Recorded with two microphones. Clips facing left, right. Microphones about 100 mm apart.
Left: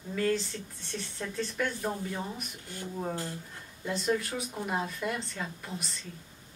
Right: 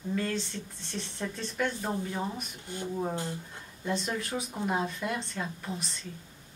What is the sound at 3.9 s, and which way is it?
Speech, centre (ahead or behind).